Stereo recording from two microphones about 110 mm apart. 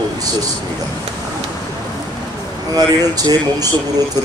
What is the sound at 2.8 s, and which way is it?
Speech, 35° right (ahead or behind).